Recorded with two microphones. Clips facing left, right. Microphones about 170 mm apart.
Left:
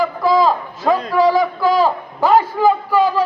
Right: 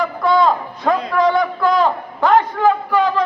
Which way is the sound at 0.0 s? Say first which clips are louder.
Left 1 dB; centre (ahead or behind).